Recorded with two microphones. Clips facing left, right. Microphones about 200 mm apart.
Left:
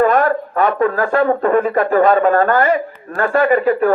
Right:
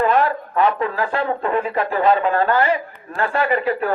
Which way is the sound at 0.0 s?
50° left (ahead or behind).